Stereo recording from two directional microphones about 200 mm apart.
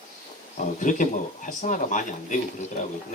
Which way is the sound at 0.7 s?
40° left (ahead or behind).